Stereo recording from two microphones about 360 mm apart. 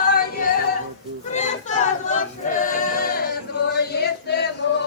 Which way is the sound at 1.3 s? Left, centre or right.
Centre.